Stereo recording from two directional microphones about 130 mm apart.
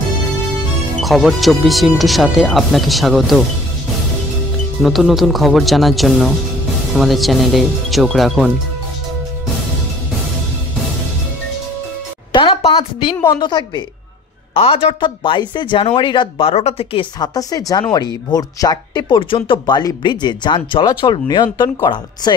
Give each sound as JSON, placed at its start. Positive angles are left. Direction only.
{"t": 1.0, "sound": "speech", "side_deg": 0}
{"t": 4.8, "sound": "speech", "side_deg": 0}
{"t": 12.3, "sound": "a sound", "side_deg": 40}
{"t": 13.4, "sound": "speech", "side_deg": 35}
{"t": 14.5, "sound": "speech", "side_deg": 45}
{"t": 17.2, "sound": "speech", "side_deg": 30}